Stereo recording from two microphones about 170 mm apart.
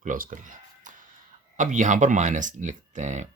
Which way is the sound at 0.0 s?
50° right (ahead or behind).